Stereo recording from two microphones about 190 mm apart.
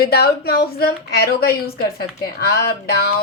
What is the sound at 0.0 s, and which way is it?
A woman's voice, 55° left (ahead or behind).